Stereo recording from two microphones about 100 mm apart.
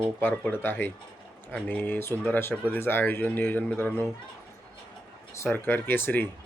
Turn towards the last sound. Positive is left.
turn(degrees=20)  # may be behind; listen again after turning